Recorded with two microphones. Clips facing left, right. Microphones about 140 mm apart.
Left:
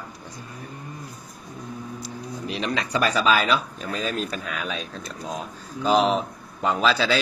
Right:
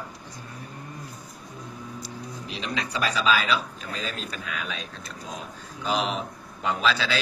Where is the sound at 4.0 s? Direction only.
35° left (ahead or behind).